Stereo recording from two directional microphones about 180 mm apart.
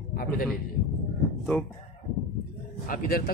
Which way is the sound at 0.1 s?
50° left (ahead or behind).